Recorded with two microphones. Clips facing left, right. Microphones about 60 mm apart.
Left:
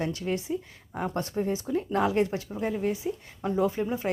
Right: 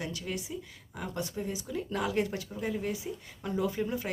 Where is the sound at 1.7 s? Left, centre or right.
Left.